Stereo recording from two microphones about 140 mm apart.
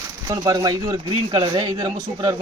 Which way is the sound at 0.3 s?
25° right (ahead or behind).